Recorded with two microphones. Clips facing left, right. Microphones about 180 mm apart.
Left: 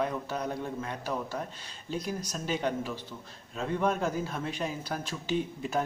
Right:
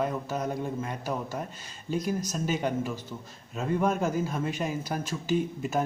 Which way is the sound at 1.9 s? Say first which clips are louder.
Right 4 dB; 50° right (ahead or behind).